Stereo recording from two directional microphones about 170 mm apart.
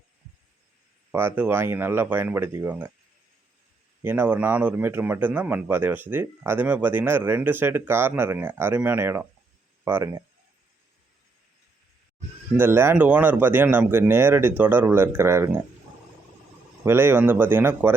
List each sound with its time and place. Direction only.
1.1 s a man's voice: 10° right (ahead or behind)
4.0 s a man's voice: 10° right (ahead or behind)
12.5 s a man's voice: 15° right (ahead or behind)
16.8 s a man's voice: 15° right (ahead or behind)